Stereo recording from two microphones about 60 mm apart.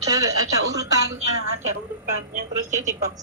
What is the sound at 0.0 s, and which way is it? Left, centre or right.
A woman's voice, right.